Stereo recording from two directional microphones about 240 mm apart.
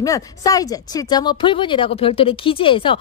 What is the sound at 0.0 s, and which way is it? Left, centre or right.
Speech, centre.